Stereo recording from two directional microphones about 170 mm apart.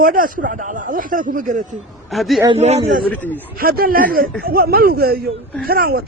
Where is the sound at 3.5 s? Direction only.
60° right (ahead or behind).